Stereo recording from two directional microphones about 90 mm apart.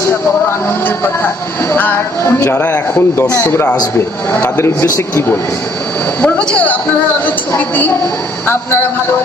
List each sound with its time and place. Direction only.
1.7 s a man's voice: 30° left (ahead or behind)
6.2 s speech: 15° left (ahead or behind)